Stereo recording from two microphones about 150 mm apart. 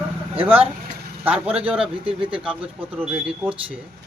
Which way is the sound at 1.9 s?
35° right (ahead or behind).